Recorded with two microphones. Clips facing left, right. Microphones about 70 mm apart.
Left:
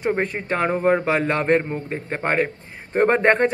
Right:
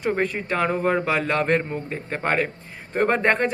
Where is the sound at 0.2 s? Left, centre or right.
Left.